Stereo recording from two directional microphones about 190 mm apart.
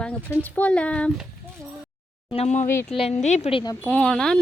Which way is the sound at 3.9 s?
5° left (ahead or behind).